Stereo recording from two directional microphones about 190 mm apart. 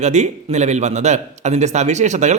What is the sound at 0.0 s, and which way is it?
Speech, 35° right (ahead or behind).